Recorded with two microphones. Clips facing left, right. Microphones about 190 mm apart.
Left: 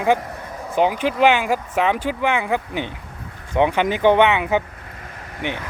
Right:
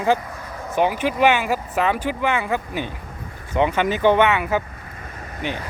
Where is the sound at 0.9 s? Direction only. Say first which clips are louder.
Left 1 dB; 10° right (ahead or behind).